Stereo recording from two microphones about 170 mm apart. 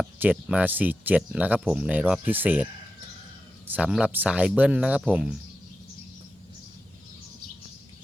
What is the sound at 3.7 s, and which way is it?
Speech, 10° right (ahead or behind).